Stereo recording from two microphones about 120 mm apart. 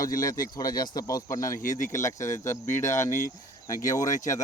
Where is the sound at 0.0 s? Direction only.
30° left (ahead or behind).